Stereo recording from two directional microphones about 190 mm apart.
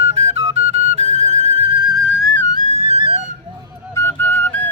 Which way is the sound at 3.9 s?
15° left (ahead or behind).